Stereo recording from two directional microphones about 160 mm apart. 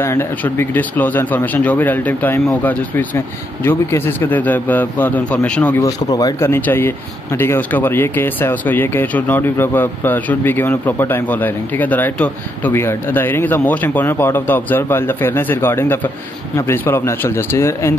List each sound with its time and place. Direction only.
0.0 s speech: 15° left (ahead or behind)
5.9 s speech: 25° left (ahead or behind)